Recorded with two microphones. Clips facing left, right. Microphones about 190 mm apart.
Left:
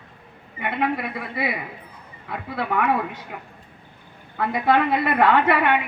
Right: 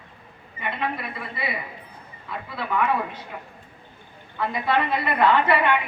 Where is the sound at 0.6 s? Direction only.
70° left (ahead or behind).